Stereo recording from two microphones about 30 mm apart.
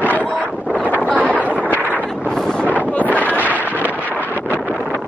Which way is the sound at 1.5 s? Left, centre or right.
Right.